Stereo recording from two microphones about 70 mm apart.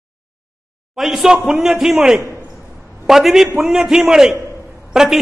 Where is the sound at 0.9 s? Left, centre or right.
Centre.